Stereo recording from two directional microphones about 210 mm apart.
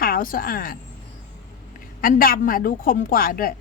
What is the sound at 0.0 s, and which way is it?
Speech, 40° left (ahead or behind).